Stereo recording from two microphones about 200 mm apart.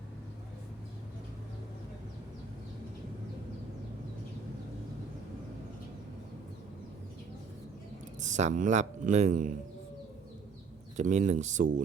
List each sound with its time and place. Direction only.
8.2 s speech: 35° right (ahead or behind)
10.9 s speech: 40° right (ahead or behind)